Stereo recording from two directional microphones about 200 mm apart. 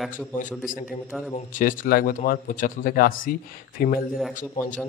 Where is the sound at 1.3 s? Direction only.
40° left (ahead or behind).